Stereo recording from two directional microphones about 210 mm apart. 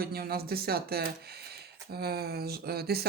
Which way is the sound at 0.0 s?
45° right (ahead or behind).